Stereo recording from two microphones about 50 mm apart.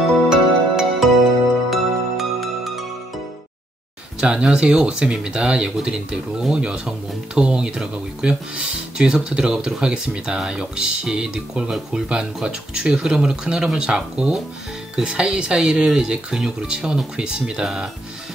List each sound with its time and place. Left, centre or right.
0.3 s music: centre
4.2 s speech: centre